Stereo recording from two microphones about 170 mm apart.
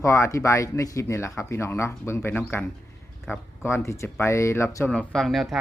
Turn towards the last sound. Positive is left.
turn(degrees=0)  # may be behind; listen again after turning